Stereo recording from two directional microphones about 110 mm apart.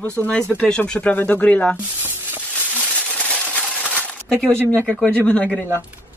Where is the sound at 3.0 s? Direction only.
10° left (ahead or behind).